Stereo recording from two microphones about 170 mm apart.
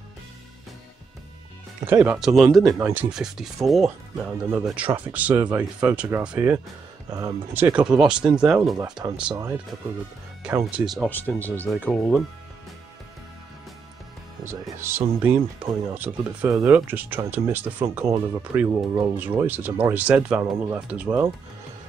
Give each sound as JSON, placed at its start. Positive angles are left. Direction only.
{"t": 1.9, "sound": "speech", "side_deg": -10}
{"t": 2.8, "sound": "speech", "side_deg": -10}
{"t": 7.1, "sound": "speech", "side_deg": -20}
{"t": 8.0, "sound": "speech", "side_deg": -5}
{"t": 9.3, "sound": "speech", "side_deg": -15}
{"t": 11.1, "sound": "speech", "side_deg": 10}
{"t": 14.4, "sound": "speech", "side_deg": -15}
{"t": 20.4, "sound": "speech", "side_deg": -20}